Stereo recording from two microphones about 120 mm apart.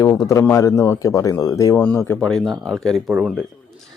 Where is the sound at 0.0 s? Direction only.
30° left (ahead or behind).